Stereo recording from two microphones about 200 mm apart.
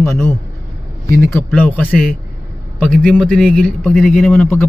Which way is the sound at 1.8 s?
5° left (ahead or behind).